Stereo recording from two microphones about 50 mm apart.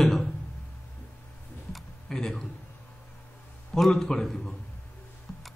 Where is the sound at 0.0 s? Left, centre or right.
Centre.